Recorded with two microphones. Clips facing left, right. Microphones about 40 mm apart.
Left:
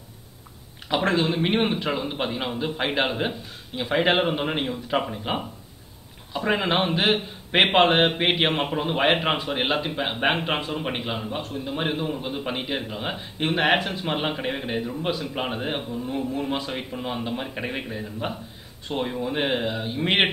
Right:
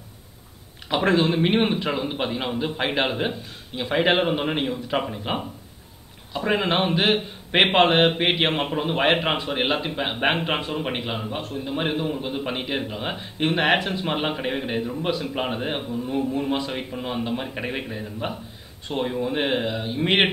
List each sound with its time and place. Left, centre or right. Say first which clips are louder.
0.8 s a man's voice: right 2 dB; centre